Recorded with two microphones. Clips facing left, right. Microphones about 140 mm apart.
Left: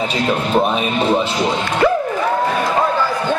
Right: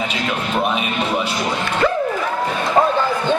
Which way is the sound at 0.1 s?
35° left (ahead or behind).